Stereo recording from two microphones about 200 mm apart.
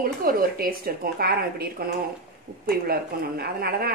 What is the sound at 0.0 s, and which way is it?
Speech, 45° right (ahead or behind).